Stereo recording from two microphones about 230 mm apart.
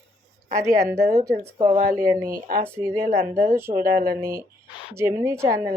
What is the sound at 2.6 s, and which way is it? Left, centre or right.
Speech, centre.